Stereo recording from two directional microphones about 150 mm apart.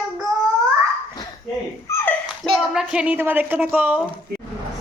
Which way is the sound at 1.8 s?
15° left (ahead or behind).